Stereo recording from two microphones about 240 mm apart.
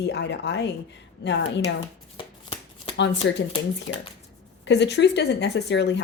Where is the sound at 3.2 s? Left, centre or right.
Left.